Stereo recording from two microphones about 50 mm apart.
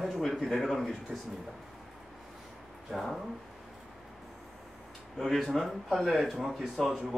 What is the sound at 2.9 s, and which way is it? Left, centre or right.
Speech, centre.